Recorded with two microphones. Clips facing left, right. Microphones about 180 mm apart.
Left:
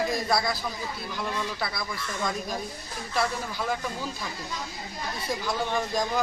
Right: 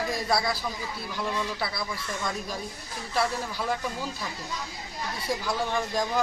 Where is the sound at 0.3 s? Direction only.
5° right (ahead or behind).